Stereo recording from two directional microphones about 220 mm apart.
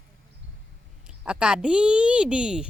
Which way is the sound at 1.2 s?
5° right (ahead or behind).